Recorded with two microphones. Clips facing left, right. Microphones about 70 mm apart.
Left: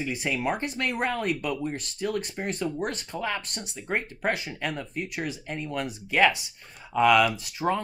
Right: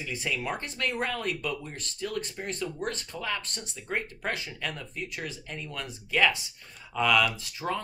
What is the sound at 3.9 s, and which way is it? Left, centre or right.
Speech, left.